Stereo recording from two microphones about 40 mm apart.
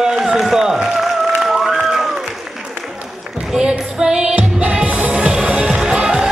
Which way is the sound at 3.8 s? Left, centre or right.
Right.